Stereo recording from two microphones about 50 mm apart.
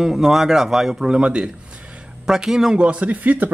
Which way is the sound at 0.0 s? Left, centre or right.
Centre.